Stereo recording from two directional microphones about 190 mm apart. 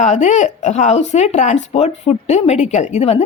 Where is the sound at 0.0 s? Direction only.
35° left (ahead or behind).